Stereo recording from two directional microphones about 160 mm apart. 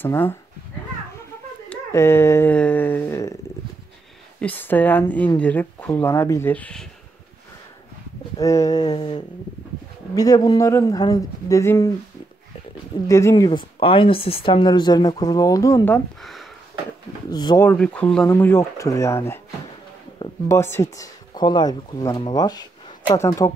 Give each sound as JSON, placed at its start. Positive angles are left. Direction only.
{"t": 0.0, "sound": "speech", "side_deg": 15}
{"t": 1.7, "sound": "speech", "side_deg": 15}
{"t": 4.4, "sound": "speech", "side_deg": 10}
{"t": 8.4, "sound": "speech", "side_deg": 20}
{"t": 13.1, "sound": "speech", "side_deg": 20}
{"t": 13.5, "sound": "speech", "side_deg": 35}
{"t": 16.2, "sound": "speech", "side_deg": 0}
{"t": 17.3, "sound": "speech", "side_deg": 25}
{"t": 17.6, "sound": "speech", "side_deg": 10}
{"t": 20.4, "sound": "speech", "side_deg": 15}